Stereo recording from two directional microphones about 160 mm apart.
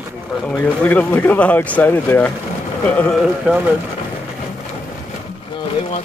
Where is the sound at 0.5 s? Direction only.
10° left (ahead or behind).